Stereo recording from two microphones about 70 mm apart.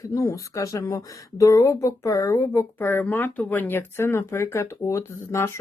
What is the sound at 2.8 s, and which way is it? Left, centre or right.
Speech, left.